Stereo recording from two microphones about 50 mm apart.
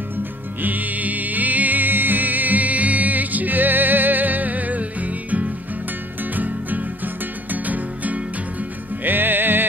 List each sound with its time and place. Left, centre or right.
0.6 s music: right